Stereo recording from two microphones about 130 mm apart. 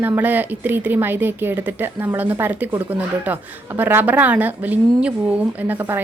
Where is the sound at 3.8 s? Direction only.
15° right (ahead or behind).